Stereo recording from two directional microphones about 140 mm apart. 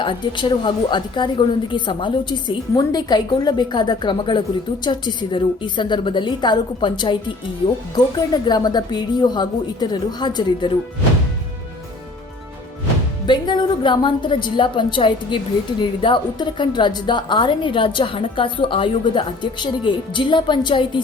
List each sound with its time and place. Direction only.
0.0 s a woman's voice: 35° left (ahead or behind)
13.2 s a woman's voice: 35° left (ahead or behind)